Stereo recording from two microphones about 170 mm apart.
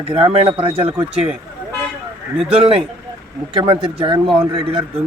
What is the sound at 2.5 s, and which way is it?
Speech, 35° right (ahead or behind).